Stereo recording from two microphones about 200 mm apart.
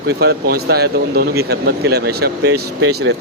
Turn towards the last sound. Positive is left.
turn(degrees=-55)  # may be behind; listen again after turning